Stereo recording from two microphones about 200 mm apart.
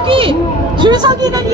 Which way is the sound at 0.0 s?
25° right (ahead or behind).